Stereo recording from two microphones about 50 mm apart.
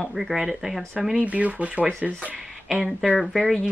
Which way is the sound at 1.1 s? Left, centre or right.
Right.